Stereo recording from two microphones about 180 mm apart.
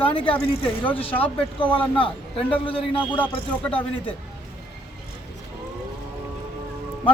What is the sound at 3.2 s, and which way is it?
Speech, 10° left (ahead or behind).